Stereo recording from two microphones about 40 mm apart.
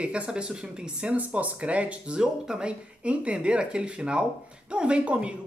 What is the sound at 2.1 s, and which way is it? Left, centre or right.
Speech, right.